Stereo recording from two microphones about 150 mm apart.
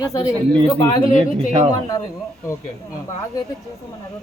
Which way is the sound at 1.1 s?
40° right (ahead or behind).